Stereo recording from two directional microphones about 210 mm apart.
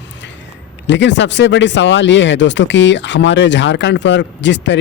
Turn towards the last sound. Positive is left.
turn(degrees=55)  # may be behind; listen again after turning